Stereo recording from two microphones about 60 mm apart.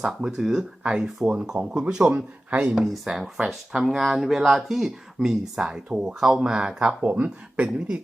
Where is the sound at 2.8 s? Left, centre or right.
Centre.